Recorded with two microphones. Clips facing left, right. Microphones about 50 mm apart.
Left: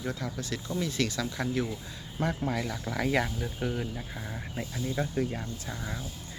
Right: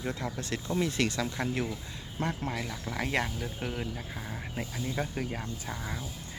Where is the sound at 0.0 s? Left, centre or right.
Right.